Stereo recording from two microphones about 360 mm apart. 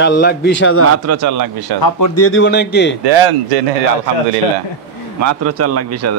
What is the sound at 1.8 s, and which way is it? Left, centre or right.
Speech, left.